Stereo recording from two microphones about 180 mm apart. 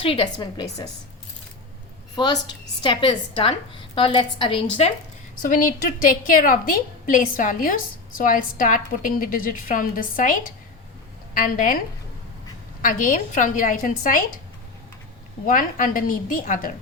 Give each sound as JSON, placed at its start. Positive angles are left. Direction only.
{"t": 0.0, "sound": "a woman's voice", "side_deg": 30}
{"t": 2.1, "sound": "a woman's voice", "side_deg": 25}
{"t": 5.5, "sound": "a woman's voice", "side_deg": 50}
{"t": 11.3, "sound": "a woman's voice", "side_deg": 50}
{"t": 12.8, "sound": "a woman's voice", "side_deg": 50}
{"t": 15.4, "sound": "a woman's voice", "side_deg": 50}